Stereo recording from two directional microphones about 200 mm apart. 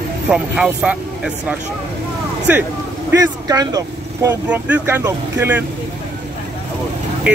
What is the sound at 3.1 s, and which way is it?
Speech, 20° right (ahead or behind).